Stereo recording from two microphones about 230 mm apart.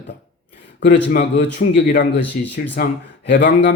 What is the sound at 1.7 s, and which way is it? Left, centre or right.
Speech, left.